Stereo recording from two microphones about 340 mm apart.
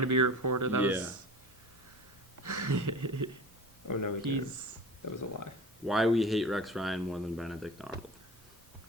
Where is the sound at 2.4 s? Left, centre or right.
Right.